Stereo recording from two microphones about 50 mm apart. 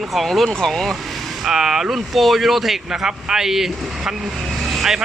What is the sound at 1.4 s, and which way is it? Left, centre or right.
Speech, centre.